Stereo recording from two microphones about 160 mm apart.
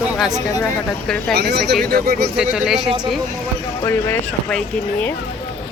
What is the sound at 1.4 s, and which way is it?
Speech, 90° right.